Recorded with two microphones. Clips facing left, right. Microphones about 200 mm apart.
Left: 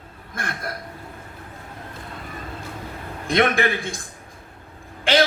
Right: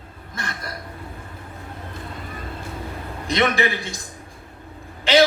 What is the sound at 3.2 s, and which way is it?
Speech, 50° left (ahead or behind).